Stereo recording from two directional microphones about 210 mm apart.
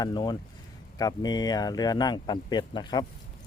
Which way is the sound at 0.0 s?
20° left (ahead or behind).